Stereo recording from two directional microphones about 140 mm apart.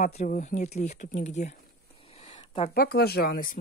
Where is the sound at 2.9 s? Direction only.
90° left.